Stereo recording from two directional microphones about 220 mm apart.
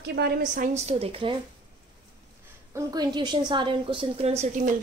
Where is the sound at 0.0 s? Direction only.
50° right (ahead or behind); by 1.3 s 25° right (ahead or behind).